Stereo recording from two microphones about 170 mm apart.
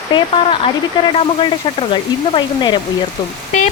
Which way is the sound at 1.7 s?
30° left (ahead or behind).